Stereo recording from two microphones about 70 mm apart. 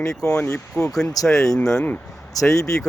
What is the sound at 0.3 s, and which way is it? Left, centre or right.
Speech, left.